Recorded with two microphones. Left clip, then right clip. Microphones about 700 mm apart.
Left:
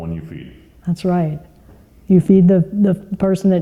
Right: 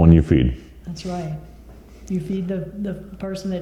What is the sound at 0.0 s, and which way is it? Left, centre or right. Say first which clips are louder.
Speech: right 15 dB; right.